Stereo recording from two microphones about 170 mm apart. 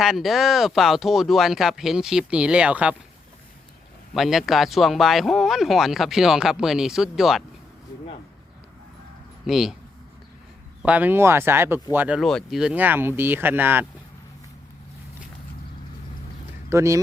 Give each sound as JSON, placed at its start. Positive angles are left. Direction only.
{"t": 0.0, "sound": "speech", "side_deg": 0}
{"t": 4.1, "sound": "speech", "side_deg": 0}
{"t": 9.5, "sound": "speech", "side_deg": 0}
{"t": 10.8, "sound": "speech", "side_deg": -10}
{"t": 16.6, "sound": "speech", "side_deg": -15}